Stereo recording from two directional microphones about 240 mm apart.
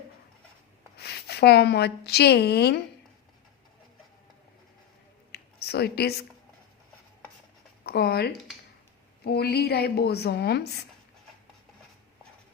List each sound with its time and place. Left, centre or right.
0.9 s a woman's voice: left
5.3 s a sound: left
7.9 s speech: left